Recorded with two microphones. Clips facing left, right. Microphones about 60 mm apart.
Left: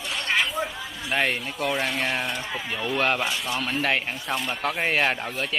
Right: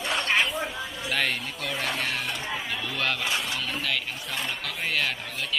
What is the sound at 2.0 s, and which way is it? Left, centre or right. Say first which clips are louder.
A man's voice: left 3 dB; left.